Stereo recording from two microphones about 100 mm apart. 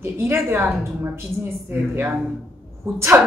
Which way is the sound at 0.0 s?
25° right (ahead or behind).